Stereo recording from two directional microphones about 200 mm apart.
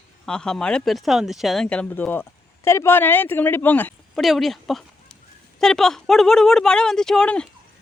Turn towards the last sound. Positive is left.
turn(degrees=5)  # may be behind; listen again after turning